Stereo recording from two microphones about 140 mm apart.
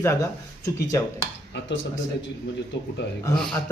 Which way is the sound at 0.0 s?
20° left (ahead or behind).